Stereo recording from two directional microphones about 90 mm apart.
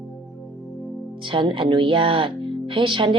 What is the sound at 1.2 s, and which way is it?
Speech, 65° right (ahead or behind).